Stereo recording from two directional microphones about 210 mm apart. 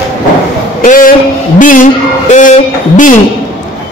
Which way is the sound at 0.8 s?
40° left (ahead or behind).